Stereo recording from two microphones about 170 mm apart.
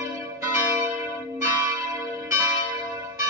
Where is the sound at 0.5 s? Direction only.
15° right (ahead or behind).